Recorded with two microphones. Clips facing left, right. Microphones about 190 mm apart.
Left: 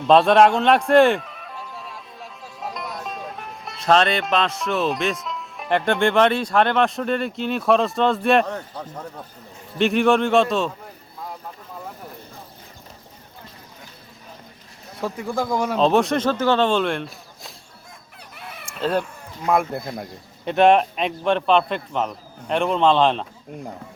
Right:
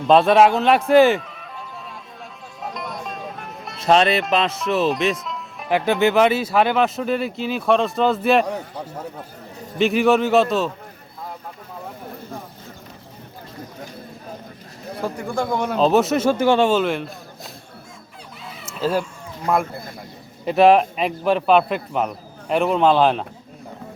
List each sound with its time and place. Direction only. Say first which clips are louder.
0.0 s a man's voice: even; centre (ahead or behind)
15.0 s a man's voice: even; centre (ahead or behind)
18.3 s chicken: right 1 dB; 60° left (ahead or behind)
18.8 s a man's voice: right 1 dB; 5° right (ahead or behind)